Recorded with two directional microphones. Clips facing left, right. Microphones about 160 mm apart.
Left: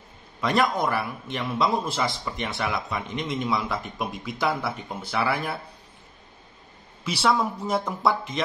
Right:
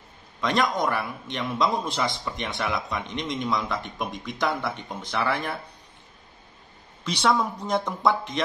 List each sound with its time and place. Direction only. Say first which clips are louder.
0.4 s a man's voice: left 1 dB; 5° left (ahead or behind)
7.1 s a man's voice: even; 5° left (ahead or behind)